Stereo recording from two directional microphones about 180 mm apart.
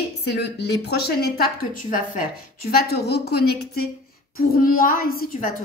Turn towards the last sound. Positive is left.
turn(degrees=55)  # may be behind; listen again after turning